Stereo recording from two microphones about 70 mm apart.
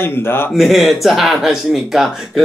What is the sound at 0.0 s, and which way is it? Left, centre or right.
Speech, left.